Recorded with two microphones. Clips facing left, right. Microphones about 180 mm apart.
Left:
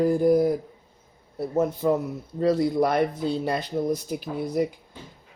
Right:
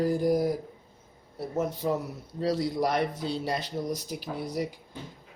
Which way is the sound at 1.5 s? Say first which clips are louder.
Left 6 dB; 60° left (ahead or behind).